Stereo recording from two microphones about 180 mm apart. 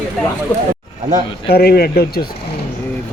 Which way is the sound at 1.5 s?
60° left (ahead or behind).